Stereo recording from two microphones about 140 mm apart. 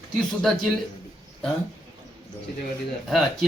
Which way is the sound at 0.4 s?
5° left (ahead or behind).